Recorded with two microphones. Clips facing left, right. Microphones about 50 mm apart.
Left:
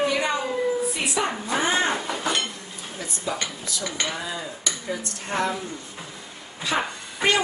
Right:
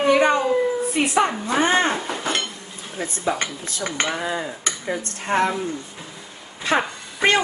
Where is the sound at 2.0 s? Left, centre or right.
Centre.